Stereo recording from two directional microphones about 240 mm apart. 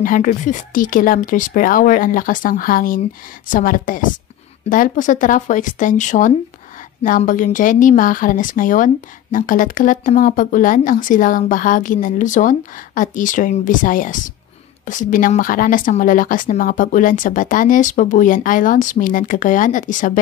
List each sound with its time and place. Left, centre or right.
0.0 s a woman's voice: left